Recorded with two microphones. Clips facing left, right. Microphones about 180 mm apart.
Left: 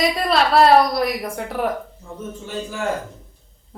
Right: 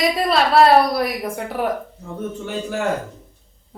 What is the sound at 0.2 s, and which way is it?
A woman's voice, centre (ahead or behind).